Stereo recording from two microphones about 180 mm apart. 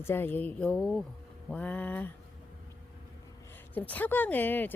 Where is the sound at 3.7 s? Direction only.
10° left (ahead or behind).